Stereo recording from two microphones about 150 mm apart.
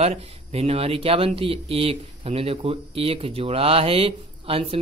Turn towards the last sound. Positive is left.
turn(degrees=-40)  # may be behind; listen again after turning